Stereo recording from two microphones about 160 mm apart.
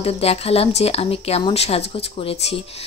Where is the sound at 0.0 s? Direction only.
40° left (ahead or behind).